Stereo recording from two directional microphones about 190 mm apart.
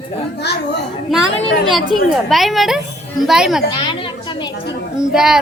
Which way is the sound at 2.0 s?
Centre (ahead or behind).